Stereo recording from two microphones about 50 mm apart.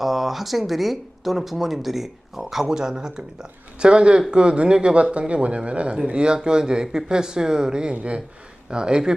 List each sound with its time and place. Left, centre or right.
0.0 s speech: centre